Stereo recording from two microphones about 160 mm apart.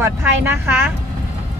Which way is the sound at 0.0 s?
15° right (ahead or behind).